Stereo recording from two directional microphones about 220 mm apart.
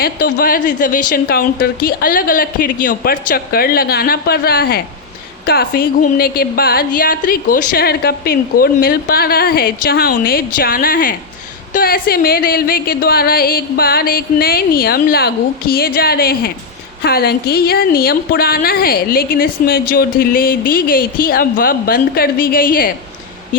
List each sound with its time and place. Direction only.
0.0 s a woman's voice: 40° left (ahead or behind)